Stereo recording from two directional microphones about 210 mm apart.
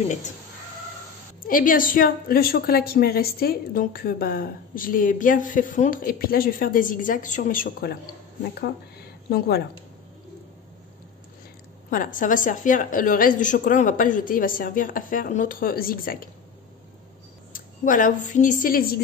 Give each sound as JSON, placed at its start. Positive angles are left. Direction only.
{"t": 1.4, "sound": "a woman's voice", "side_deg": 40}
{"t": 11.9, "sound": "a woman's voice", "side_deg": 40}
{"t": 17.5, "sound": "speech", "side_deg": 40}